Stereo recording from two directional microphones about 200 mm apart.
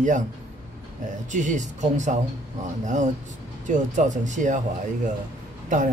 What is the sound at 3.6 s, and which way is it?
Speech, 40° right (ahead or behind).